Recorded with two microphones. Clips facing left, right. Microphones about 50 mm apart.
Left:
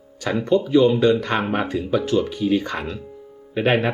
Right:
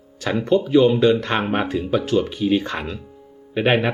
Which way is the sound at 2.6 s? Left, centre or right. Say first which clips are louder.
Even; centre.